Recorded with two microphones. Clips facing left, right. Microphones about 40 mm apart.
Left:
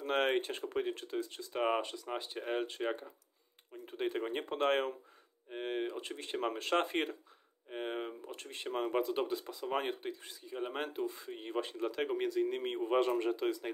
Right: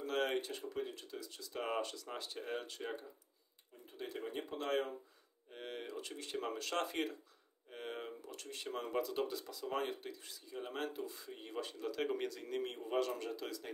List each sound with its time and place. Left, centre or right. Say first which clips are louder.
0.0 s speech: left 5 dB; left
3.8 s speech: left 8 dB; left
5.5 s speech: left 9 dB; left
12.0 s speech: left 7 dB; centre
12.5 s speech: left 5 dB; left